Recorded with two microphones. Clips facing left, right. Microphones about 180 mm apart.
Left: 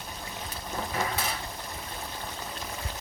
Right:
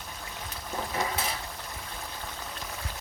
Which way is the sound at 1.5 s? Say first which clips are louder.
Left 2 dB; 15° left (ahead or behind).